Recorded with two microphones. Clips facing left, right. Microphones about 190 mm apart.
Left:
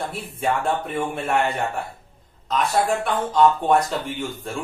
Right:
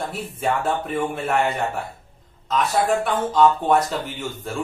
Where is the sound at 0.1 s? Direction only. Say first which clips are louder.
Even; centre (ahead or behind).